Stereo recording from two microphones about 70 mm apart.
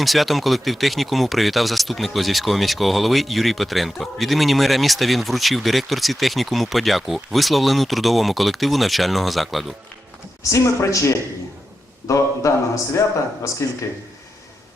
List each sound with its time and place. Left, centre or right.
0.0 s speech: centre
10.5 s speech: left